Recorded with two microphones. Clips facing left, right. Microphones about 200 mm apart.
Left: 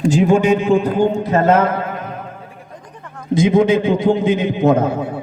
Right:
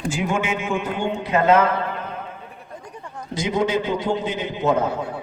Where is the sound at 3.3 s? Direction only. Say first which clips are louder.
Left 9 dB; 55° left (ahead or behind).